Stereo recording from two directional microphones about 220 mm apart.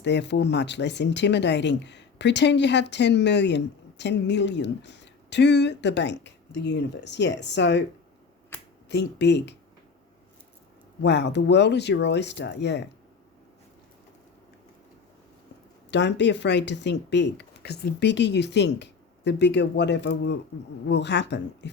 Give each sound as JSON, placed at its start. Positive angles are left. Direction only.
{"t": 0.0, "sound": "speech", "side_deg": 50}
{"t": 8.9, "sound": "speech", "side_deg": 50}
{"t": 11.0, "sound": "speech", "side_deg": 50}
{"t": 15.9, "sound": "speech", "side_deg": 55}